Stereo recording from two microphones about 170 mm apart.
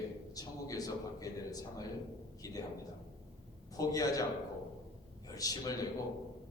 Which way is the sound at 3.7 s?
20° left (ahead or behind).